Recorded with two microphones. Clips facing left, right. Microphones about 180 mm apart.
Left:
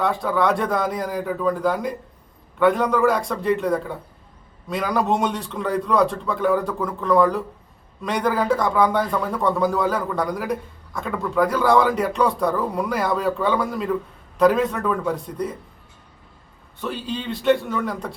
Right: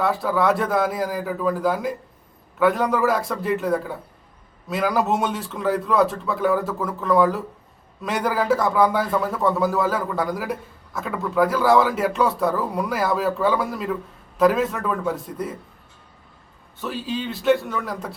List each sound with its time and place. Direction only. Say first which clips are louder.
0.0 s a man's voice: even; 5° right (ahead or behind)
16.8 s a man's voice: even; centre (ahead or behind)